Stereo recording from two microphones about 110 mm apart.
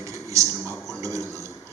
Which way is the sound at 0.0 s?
30° right (ahead or behind).